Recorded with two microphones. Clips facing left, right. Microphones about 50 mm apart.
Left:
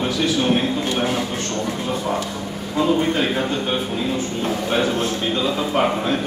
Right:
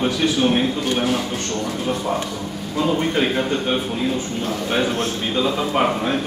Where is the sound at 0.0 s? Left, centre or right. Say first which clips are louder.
Right 1 dB; centre.